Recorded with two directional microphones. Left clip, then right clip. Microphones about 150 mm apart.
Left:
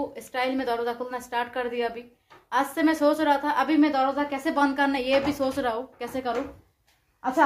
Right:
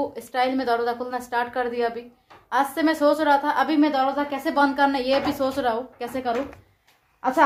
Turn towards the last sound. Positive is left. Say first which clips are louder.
# right 3 dB
turn(degrees=-35)  # may be behind; listen again after turning